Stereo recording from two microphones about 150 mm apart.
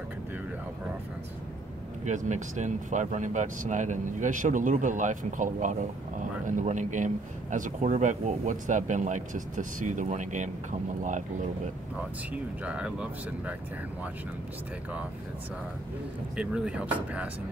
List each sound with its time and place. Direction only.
2.0 s speech: 55° right (ahead or behind)
12.3 s speech: 10° right (ahead or behind)
16.3 s speech: 5° right (ahead or behind)